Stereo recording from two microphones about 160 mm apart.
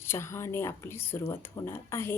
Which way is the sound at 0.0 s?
15° left (ahead or behind).